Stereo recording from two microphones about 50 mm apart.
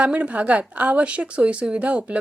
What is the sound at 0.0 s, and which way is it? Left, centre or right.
Speech, right.